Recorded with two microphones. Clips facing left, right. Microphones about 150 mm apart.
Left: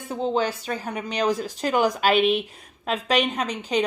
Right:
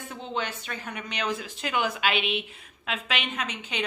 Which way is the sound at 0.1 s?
35° left (ahead or behind).